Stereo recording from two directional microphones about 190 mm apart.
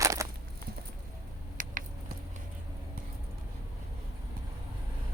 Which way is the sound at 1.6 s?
45° right (ahead or behind).